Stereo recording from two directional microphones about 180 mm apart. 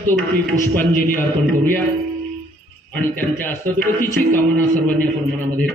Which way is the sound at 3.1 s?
10° left (ahead or behind).